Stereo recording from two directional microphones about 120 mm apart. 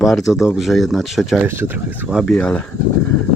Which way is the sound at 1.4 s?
20° right (ahead or behind).